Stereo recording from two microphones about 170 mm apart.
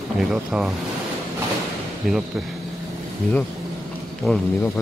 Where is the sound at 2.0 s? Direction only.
Centre (ahead or behind).